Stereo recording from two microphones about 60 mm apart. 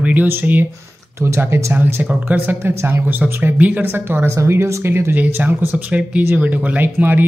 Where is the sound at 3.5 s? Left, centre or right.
Right.